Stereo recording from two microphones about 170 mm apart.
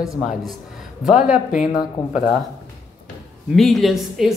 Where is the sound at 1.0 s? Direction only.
5° right (ahead or behind).